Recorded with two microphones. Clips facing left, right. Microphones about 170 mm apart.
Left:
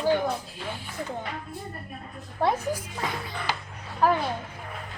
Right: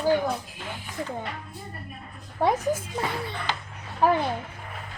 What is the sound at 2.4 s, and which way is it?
Speech, 15° right (ahead or behind).